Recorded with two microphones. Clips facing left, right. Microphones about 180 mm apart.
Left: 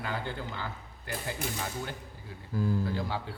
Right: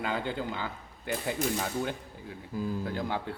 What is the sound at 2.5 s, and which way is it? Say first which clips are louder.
Speech: left 2 dB; 20° right (ahead or behind).